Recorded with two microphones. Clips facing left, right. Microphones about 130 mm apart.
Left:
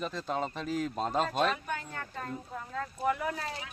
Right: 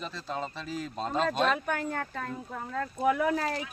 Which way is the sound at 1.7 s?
55° right (ahead or behind).